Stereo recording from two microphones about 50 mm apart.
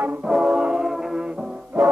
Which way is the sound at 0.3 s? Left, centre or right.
Centre.